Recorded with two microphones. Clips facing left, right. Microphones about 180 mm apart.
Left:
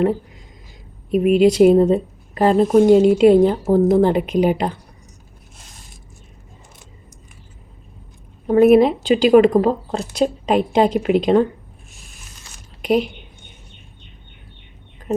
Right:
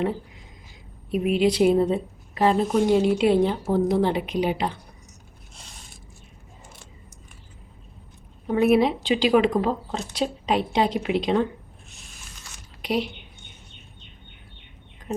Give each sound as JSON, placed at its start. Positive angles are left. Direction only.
{"t": 1.1, "sound": "a woman's voice", "side_deg": 45}
{"t": 8.4, "sound": "a woman's voice", "side_deg": 45}
{"t": 12.8, "sound": "a sound", "side_deg": 50}